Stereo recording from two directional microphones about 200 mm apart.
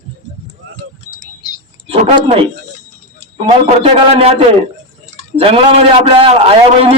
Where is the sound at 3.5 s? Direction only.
30° right (ahead or behind).